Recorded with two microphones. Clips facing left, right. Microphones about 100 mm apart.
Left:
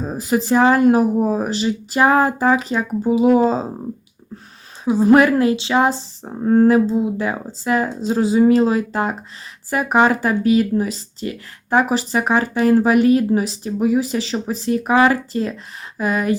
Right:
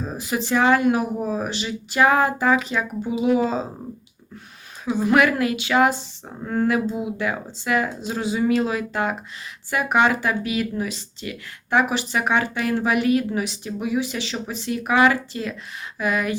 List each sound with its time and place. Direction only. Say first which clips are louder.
0.0 s speech: left 6 dB; 35° left (ahead or behind)
4.9 s speech: left 6 dB; 35° left (ahead or behind)